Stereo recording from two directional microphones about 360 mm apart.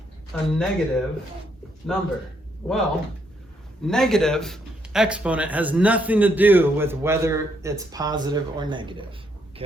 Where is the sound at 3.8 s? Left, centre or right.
Centre.